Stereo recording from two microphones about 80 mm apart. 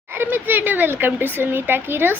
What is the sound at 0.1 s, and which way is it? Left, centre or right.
A woman's voice, right.